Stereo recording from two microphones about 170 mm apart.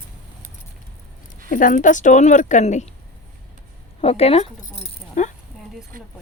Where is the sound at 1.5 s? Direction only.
50° left (ahead or behind).